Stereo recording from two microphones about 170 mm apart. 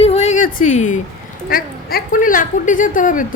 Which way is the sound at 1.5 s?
60° left (ahead or behind).